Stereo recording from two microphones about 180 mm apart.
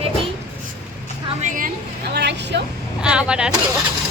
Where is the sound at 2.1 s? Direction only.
70° right (ahead or behind).